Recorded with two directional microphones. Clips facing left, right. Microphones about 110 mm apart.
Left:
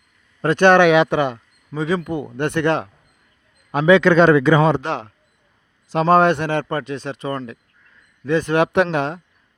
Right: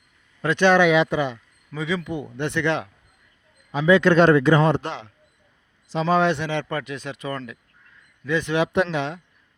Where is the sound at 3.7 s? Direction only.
75° left (ahead or behind).